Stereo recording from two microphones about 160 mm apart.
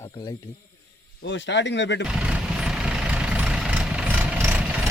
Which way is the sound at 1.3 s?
90° left.